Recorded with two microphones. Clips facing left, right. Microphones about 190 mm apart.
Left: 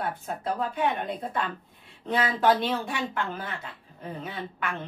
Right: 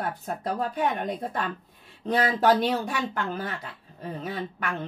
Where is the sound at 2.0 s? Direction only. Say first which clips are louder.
Right 2 dB; 40° right (ahead or behind).